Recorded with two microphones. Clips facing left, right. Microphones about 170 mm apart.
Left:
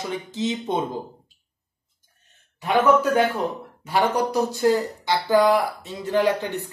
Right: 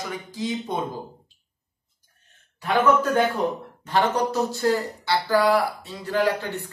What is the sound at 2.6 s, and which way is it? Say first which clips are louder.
Speech: left 2 dB; 15° left (ahead or behind).